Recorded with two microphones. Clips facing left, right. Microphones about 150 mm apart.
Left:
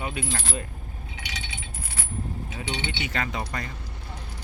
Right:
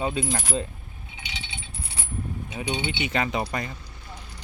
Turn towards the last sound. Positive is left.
turn(degrees=-15)  # may be behind; listen again after turning